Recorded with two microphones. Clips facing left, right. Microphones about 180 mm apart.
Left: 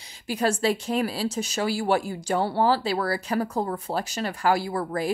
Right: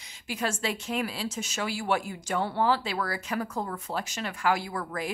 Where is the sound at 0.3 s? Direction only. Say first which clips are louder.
Left 7 dB; 35° left (ahead or behind).